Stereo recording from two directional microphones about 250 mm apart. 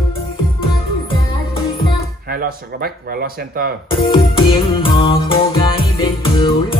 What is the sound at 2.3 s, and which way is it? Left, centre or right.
Speech, right.